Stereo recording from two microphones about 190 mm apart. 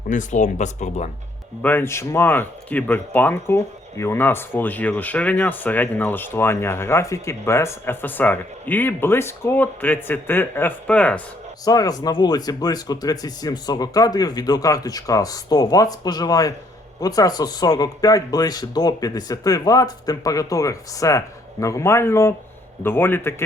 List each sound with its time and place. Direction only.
0.1 s speech: 40° left (ahead or behind)
1.6 s speech: 10° left (ahead or behind)
11.6 s speech: 20° left (ahead or behind)